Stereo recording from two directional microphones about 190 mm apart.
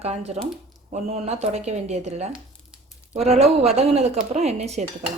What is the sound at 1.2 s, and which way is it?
Speech, 35° right (ahead or behind).